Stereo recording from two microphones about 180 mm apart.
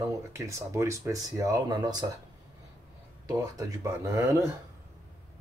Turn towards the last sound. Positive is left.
turn(degrees=-15)  # may be behind; listen again after turning